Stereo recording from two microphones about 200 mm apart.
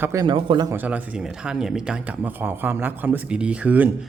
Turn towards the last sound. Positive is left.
turn(degrees=-10)  # may be behind; listen again after turning